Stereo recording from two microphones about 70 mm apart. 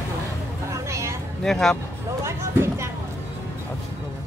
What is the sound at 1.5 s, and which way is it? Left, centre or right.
Speech, centre.